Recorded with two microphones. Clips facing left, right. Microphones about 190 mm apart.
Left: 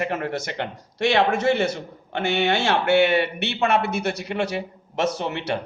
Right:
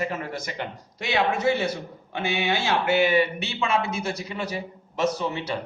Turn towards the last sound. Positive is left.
turn(degrees=65)  # may be behind; listen again after turning